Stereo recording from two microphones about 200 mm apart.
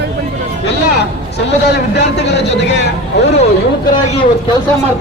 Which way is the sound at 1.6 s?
60° left (ahead or behind).